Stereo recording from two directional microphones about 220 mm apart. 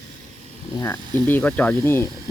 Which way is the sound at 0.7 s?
10° left (ahead or behind).